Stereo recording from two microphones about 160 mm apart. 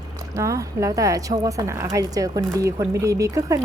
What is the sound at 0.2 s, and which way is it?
Speech, 20° right (ahead or behind).